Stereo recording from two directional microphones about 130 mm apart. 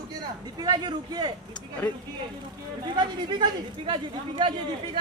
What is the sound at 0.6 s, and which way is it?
Speech, 30° right (ahead or behind).